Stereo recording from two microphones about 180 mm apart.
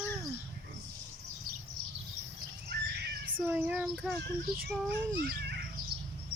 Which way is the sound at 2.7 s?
70° right (ahead or behind).